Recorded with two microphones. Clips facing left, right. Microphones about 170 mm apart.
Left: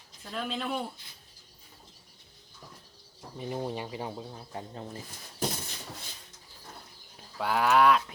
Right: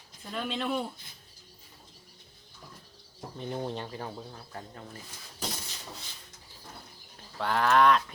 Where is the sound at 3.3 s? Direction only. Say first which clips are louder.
Left 1 dB; 5° left (ahead or behind); by 4.9 s 20° left (ahead or behind).